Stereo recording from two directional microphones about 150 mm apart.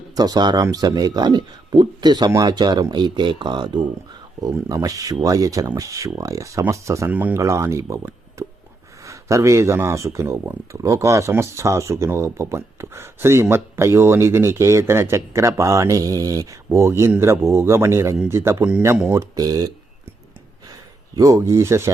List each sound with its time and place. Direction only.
0.2 s speech: 25° right (ahead or behind)
8.4 s a sound: 20° right (ahead or behind)
9.0 s speech: 20° right (ahead or behind)
19.2 s speech: 25° right (ahead or behind)
21.2 s speech: 20° right (ahead or behind)